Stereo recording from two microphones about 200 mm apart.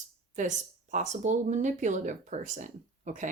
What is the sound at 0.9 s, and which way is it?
Speech, 35° right (ahead or behind).